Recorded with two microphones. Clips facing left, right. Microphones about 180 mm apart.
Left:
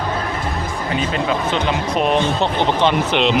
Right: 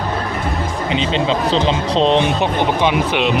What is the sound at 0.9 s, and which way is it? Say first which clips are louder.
Speech: right 2 dB; 25° right (ahead or behind).